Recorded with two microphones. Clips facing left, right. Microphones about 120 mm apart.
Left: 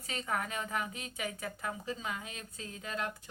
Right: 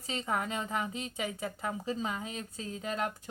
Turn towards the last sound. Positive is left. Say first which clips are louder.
# right 4 dB
turn(degrees=-35)  # may be behind; listen again after turning